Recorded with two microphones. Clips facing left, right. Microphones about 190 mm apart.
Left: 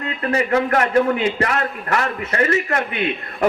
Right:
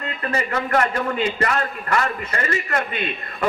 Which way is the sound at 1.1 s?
65° left (ahead or behind).